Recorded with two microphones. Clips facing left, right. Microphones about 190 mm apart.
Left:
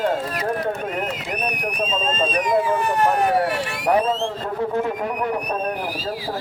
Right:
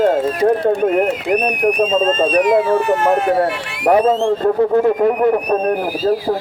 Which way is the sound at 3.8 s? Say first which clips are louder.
Right 8 dB; 55° right (ahead or behind).